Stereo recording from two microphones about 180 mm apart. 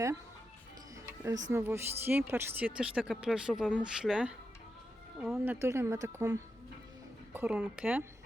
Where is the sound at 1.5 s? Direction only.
15° right (ahead or behind).